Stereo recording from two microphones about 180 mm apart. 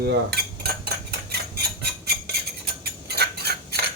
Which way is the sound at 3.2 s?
65° right (ahead or behind).